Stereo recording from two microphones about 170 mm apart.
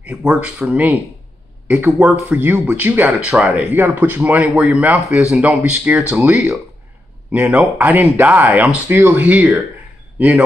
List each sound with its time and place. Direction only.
0.0 s a man's voice: 5° right (ahead or behind)